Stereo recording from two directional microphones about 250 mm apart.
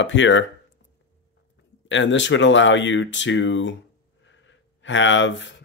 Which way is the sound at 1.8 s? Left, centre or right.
Left.